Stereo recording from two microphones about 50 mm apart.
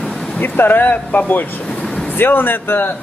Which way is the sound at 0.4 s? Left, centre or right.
Left.